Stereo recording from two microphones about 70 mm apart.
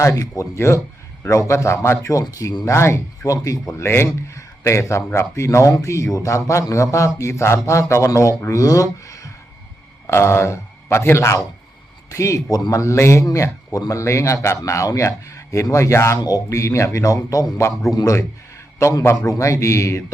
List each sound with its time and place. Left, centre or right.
0.0 s a man's voice: left
2.2 s speech: left
2.6 s a man's voice: left
5.0 s speech: left
5.3 s a man's voice: left
8.6 s speech: left
10.1 s a man's voice: left
16.2 s speech: left
17.9 s a man's voice: left